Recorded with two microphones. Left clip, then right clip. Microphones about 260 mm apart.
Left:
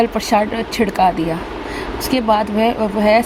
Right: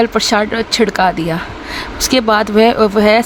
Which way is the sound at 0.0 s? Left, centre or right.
Right.